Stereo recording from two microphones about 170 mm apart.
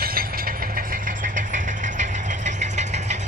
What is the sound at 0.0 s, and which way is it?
Vehicle, 60° right (ahead or behind).